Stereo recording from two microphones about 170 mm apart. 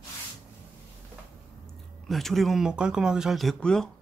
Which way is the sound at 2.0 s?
Centre (ahead or behind).